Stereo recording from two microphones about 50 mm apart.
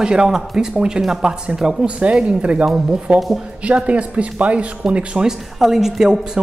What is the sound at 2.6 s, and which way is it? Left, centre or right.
Speech, centre.